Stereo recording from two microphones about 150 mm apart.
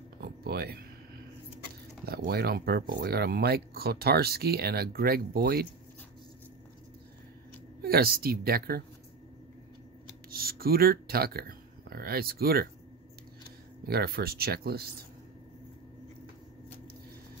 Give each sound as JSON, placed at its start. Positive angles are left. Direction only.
{"t": 0.2, "sound": "a sound", "side_deg": -90}
{"t": 2.0, "sound": "speech", "side_deg": -90}
{"t": 7.8, "sound": "a woman's voice", "side_deg": -90}
{"t": 10.3, "sound": "speech", "side_deg": -85}
{"t": 13.8, "sound": "speech", "side_deg": -90}